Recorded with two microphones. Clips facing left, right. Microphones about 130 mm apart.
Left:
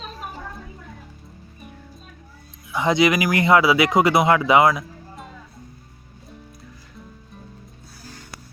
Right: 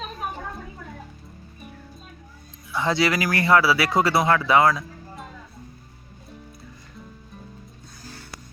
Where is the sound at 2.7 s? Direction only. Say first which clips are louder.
Left 4 dB; 15° left (ahead or behind).